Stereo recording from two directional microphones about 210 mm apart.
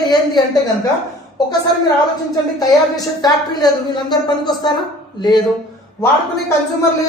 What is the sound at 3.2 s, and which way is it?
Speech, 20° left (ahead or behind).